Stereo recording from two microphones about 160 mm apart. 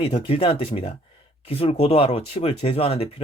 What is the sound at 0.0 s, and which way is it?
Speech, 35° left (ahead or behind).